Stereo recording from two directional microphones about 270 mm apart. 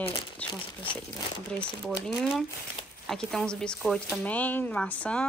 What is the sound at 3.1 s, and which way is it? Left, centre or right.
Speech, centre.